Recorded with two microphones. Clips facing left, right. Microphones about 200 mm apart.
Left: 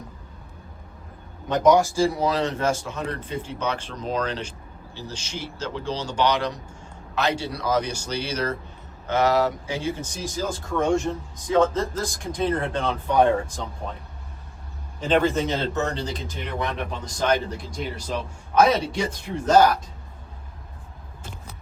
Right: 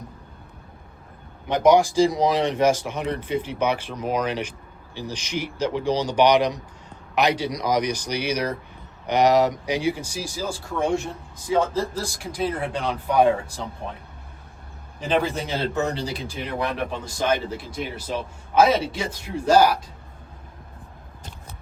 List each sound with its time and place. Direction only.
1.5 s speech: 15° right (ahead or behind)
15.1 s a man's voice: 10° right (ahead or behind)